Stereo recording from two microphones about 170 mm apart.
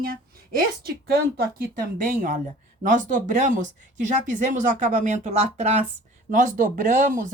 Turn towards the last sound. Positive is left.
turn(degrees=-50)  # may be behind; listen again after turning